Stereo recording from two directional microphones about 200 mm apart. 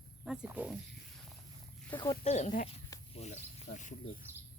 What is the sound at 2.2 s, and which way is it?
Speech, 35° left (ahead or behind).